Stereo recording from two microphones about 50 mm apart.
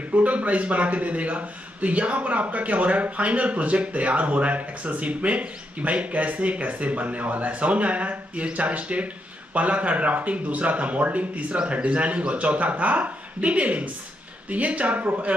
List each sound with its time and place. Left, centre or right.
0.1 s a man's voice: right